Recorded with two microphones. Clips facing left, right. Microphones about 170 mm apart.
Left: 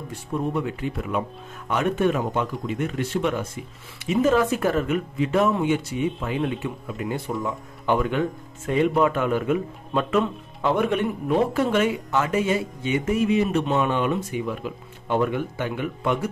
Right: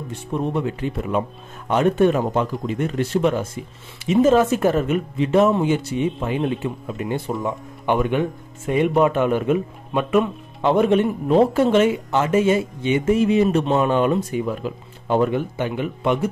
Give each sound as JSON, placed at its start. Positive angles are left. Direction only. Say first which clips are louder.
{"t": 0.3, "sound": "speech", "louder": "right 3 dB", "side_deg": -25}
{"t": 10.6, "sound": "speech", "louder": "right 5 dB", "side_deg": -25}